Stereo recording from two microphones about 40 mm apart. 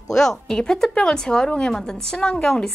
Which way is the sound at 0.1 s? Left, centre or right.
Centre.